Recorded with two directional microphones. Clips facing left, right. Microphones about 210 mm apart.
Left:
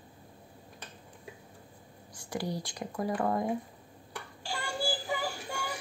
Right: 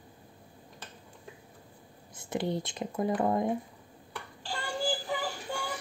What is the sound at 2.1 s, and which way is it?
Speech, 25° right (ahead or behind).